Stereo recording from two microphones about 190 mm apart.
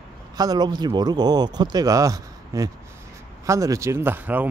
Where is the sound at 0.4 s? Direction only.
20° right (ahead or behind).